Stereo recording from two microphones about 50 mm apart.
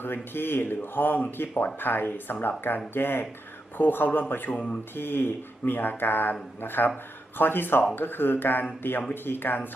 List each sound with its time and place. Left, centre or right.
0.0 s speech: left
4.5 s speech: left
4.9 s speech: left